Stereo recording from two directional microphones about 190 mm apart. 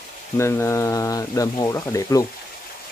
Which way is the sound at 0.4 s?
15° left (ahead or behind).